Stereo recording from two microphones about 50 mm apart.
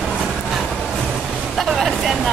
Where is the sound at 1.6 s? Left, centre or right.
Centre.